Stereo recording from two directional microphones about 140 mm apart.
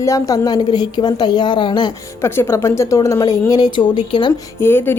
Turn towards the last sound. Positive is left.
turn(degrees=15)  # may be behind; listen again after turning